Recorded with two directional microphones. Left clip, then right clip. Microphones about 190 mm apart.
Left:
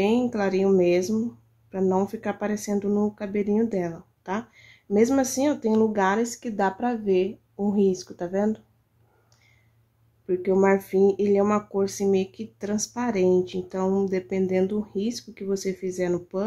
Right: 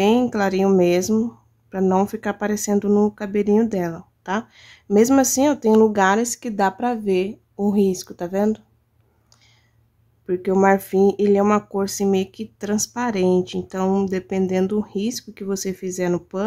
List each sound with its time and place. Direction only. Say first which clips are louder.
0.0 s speech: right 5 dB; 25° right (ahead or behind)
10.2 s speech: right 4 dB; 25° right (ahead or behind)